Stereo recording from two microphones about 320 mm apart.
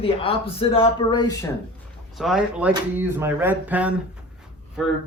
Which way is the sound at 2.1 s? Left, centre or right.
Centre.